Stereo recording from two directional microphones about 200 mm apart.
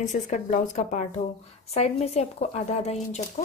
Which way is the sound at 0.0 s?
40° left (ahead or behind).